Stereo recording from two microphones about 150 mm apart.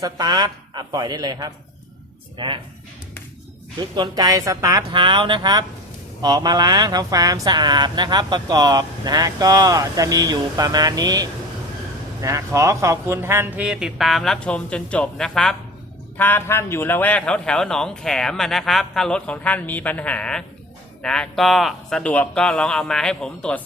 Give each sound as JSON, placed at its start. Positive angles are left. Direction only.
{"t": 0.0, "sound": "speech", "side_deg": -25}
{"t": 3.9, "sound": "speech", "side_deg": -30}
{"t": 13.7, "sound": "a man's voice", "side_deg": -5}